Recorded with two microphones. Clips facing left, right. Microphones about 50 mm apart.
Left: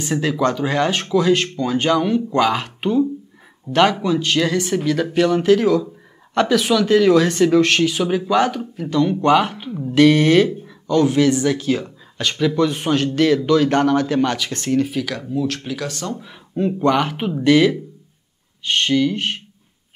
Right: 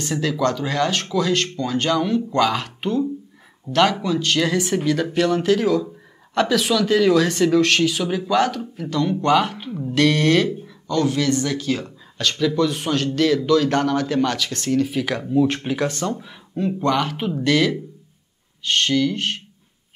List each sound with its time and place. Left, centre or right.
0.0 s speech: centre
4.5 s speech: centre
15.0 s speech: centre
16.5 s speech: centre